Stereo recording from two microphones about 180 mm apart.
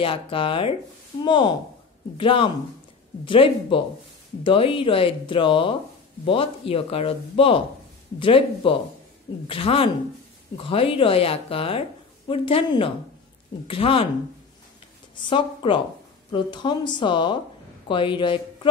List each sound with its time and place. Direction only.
0.0 s speech: 30° left (ahead or behind)
15.2 s a woman's voice: 25° left (ahead or behind)